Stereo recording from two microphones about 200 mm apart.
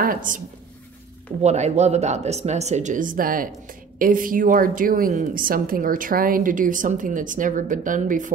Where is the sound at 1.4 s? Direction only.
35° right (ahead or behind).